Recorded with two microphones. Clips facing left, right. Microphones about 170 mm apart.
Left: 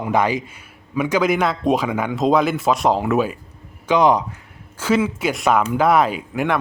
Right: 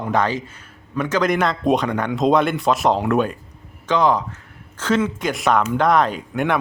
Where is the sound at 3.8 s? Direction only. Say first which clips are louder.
Left 2 dB; 15° left (ahead or behind).